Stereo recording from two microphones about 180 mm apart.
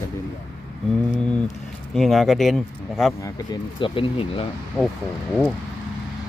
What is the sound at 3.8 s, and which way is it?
Speech, 30° left (ahead or behind).